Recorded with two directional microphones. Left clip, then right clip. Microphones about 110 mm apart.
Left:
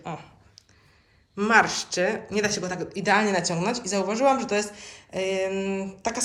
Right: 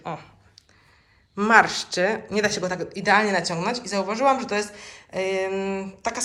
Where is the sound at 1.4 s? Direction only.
20° left (ahead or behind).